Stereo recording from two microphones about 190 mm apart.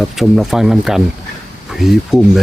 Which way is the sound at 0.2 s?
Centre (ahead or behind).